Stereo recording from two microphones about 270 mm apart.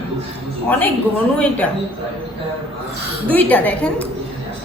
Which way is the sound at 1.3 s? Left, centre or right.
Centre.